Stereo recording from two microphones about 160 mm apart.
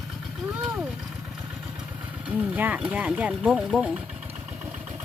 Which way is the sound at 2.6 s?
10° right (ahead or behind).